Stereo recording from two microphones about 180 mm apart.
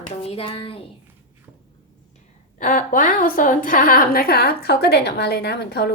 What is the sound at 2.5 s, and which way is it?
A woman's voice, 50° left (ahead or behind).